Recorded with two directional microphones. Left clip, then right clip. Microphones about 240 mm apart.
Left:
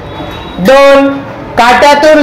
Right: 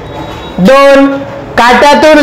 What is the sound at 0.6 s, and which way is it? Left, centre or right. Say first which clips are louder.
A man's voice: even; right.